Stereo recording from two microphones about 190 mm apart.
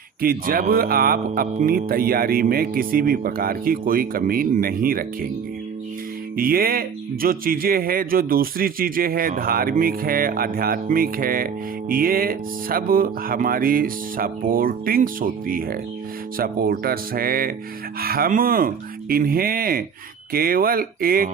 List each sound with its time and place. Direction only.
0.2 s speech: 50° right (ahead or behind)
6.3 s speech: 50° right (ahead or behind)